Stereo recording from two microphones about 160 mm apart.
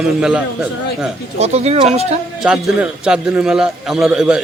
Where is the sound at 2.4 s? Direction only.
5° right (ahead or behind).